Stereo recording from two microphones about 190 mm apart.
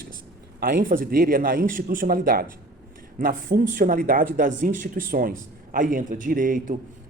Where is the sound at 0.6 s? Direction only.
50° right (ahead or behind).